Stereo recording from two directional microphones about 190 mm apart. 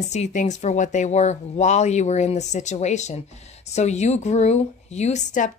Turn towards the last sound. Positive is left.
turn(degrees=40)  # may be behind; listen again after turning